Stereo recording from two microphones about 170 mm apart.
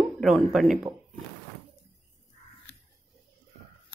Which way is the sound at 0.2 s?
Centre (ahead or behind).